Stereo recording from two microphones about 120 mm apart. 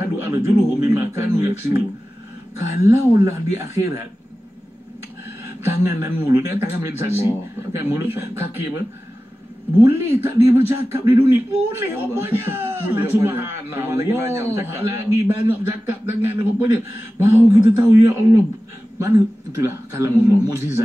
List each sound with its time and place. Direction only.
0.0 s speech: 20° right (ahead or behind)
2.5 s speech: 20° right (ahead or behind)
5.2 s speech: 20° right (ahead or behind)